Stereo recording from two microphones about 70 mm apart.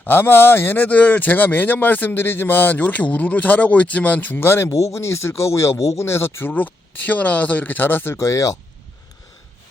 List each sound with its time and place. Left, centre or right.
0.0 s speech: left
4.7 s speech: left
6.5 s speech: left